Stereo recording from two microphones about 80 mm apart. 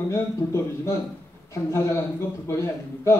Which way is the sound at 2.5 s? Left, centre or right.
Left.